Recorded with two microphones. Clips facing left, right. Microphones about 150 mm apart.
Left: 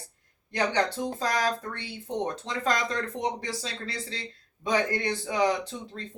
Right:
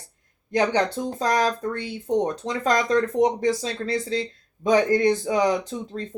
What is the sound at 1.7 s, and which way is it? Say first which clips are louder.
Speech: right 9 dB; 45° right (ahead or behind).